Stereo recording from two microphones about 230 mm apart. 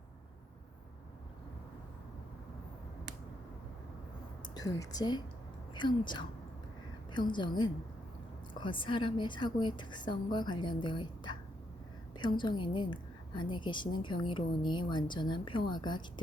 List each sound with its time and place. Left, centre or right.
4.5 s a woman's voice: centre